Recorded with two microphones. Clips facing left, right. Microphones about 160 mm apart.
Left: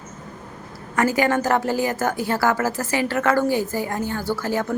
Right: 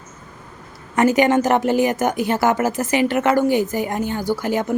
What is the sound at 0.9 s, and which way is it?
A woman's voice, 20° right (ahead or behind).